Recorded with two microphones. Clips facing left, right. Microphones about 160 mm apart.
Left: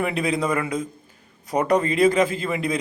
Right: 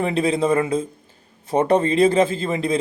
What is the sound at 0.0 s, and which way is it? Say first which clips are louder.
A man's voice: right 4 dB; 30° right (ahead or behind).